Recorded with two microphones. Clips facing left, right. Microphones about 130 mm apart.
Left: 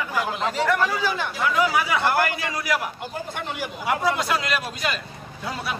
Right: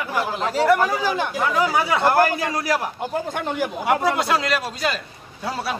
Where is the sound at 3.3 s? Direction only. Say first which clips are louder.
Right 6 dB; 45° right (ahead or behind).